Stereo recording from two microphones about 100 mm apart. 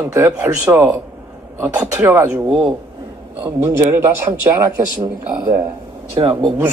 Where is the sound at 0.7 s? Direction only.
30° right (ahead or behind).